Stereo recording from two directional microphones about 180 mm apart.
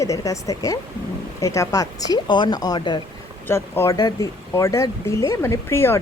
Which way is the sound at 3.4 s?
15° left (ahead or behind).